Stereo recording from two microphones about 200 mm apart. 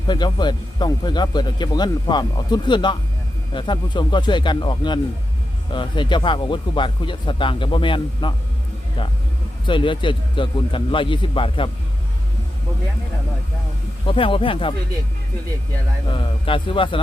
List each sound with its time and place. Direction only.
0.1 s speech: 20° left (ahead or behind)
14.1 s speech: 25° left (ahead or behind)
16.0 s speech: 25° left (ahead or behind)